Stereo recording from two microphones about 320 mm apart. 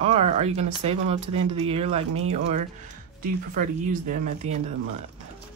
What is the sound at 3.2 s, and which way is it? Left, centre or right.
Speech, right.